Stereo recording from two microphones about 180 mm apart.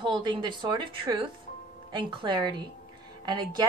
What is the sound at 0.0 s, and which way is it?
Speech, 25° right (ahead or behind).